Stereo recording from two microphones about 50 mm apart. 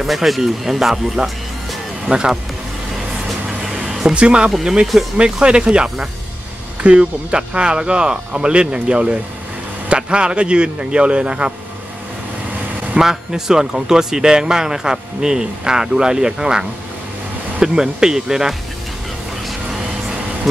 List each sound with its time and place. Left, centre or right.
0.0 s speech: centre
2.0 s speech: centre
3.7 s a sound: centre
5.1 s speech: centre
12.9 s speech: centre